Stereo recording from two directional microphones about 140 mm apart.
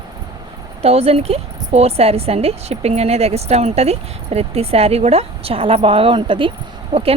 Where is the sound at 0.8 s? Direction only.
45° right (ahead or behind).